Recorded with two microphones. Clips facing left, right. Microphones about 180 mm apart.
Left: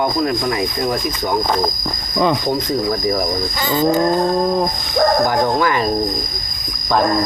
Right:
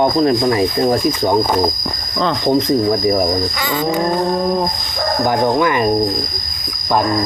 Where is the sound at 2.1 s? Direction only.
10° left (ahead or behind).